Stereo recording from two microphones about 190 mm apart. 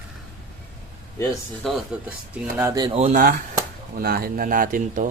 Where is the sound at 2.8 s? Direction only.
30° right (ahead or behind).